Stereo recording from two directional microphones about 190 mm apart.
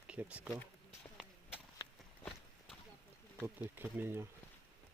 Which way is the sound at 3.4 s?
10° right (ahead or behind).